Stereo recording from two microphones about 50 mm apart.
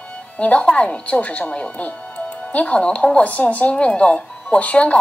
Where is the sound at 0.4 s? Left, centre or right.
Left.